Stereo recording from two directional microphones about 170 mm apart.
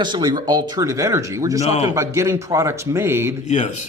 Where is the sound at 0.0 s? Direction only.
25° right (ahead or behind).